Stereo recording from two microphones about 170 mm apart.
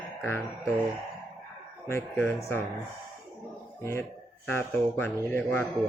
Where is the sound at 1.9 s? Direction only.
10° left (ahead or behind).